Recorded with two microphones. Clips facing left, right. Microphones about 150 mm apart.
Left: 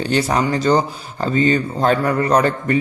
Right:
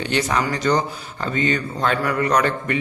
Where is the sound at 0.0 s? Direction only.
35° left (ahead or behind).